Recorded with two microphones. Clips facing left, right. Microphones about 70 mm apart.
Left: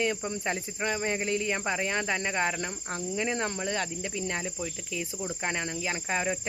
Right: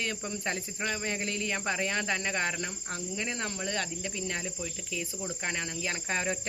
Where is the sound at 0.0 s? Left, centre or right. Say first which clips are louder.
Left 5 dB; centre.